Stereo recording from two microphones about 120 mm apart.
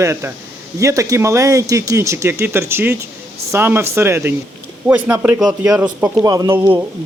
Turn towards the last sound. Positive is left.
turn(degrees=-30)  # may be behind; listen again after turning